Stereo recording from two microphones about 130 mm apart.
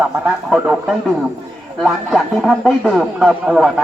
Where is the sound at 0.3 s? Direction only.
5° right (ahead or behind).